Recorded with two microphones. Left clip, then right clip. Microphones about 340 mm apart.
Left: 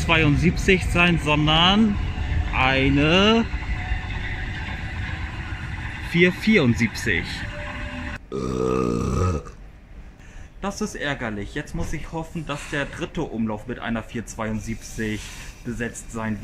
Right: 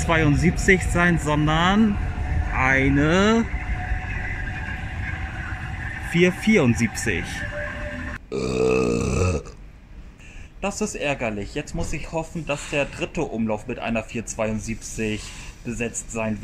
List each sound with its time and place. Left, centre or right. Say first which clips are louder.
0.1 s speech: left 1 dB; centre
6.1 s speech: left 1 dB; centre
8.3 s burping: right 3 dB; centre
10.6 s speech: right 2 dB; centre